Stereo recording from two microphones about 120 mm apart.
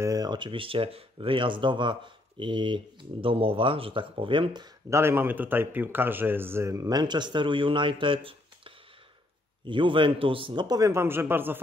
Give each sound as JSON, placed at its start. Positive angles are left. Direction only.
{"t": 0.0, "sound": "speech", "side_deg": -30}
{"t": 4.8, "sound": "a man's voice", "side_deg": -20}
{"t": 10.9, "sound": "speech", "side_deg": -20}